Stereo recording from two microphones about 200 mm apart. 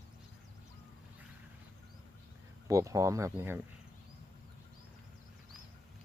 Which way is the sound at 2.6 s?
15° right (ahead or behind).